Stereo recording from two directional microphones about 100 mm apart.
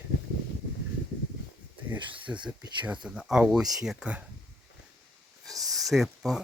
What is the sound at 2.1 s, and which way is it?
Speech, 15° right (ahead or behind).